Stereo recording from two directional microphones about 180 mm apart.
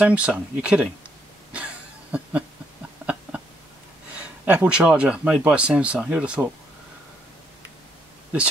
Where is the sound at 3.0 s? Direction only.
5° right (ahead or behind).